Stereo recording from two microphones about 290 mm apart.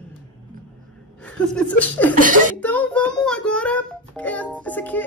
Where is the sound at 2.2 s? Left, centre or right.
Right.